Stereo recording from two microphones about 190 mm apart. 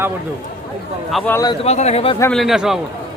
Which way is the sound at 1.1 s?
10° left (ahead or behind).